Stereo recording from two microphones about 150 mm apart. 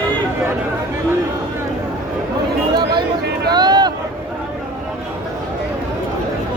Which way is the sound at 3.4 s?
30° right (ahead or behind).